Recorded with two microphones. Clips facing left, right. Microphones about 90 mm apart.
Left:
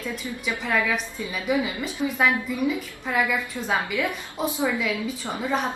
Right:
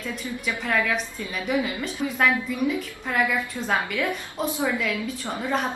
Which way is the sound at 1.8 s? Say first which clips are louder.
Even; 5° left (ahead or behind).